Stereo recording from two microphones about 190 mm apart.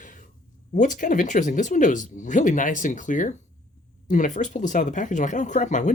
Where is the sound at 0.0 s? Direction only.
45° left (ahead or behind).